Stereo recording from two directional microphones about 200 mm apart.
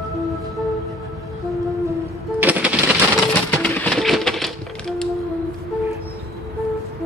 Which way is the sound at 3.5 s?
10° left (ahead or behind).